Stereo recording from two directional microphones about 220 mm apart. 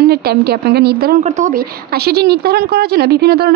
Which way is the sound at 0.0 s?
45° right (ahead or behind).